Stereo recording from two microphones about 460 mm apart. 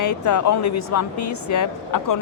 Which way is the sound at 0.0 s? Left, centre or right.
Left.